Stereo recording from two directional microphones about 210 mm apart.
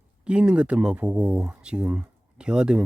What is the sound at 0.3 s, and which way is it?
Speech, 5° right (ahead or behind).